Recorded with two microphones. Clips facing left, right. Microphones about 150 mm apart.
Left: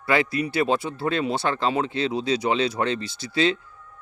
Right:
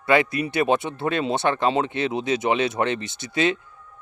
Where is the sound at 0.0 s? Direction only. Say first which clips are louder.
Right 2 dB; 20° right (ahead or behind).